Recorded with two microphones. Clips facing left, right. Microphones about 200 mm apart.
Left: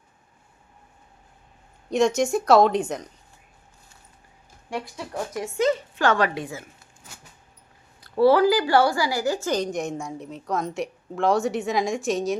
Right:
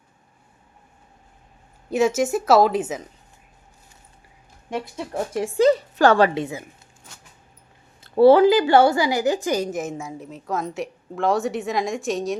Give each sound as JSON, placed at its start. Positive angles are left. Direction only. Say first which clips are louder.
{"t": 1.9, "sound": "a woman's voice", "louder": "right 1 dB", "side_deg": -5}
{"t": 4.7, "sound": "speech", "louder": "right 3 dB", "side_deg": -25}
{"t": 8.0, "sound": "a woman's voice", "louder": "right 4 dB", "side_deg": -25}